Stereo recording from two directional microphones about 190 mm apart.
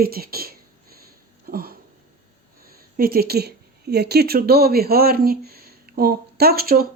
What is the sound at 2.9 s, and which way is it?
A woman's voice, 55° right (ahead or behind).